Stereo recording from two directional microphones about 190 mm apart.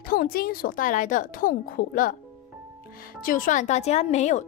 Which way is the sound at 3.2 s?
45° left (ahead or behind).